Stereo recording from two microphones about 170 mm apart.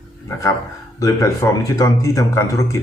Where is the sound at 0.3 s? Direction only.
20° left (ahead or behind).